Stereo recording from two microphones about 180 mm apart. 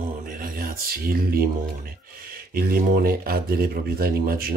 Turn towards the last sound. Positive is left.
turn(degrees=-55)  # may be behind; listen again after turning